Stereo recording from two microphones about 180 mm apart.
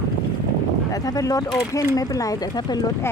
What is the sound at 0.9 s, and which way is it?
Speech, 20° left (ahead or behind).